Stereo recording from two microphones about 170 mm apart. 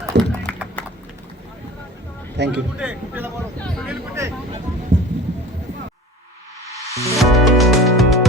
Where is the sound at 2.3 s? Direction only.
90° right.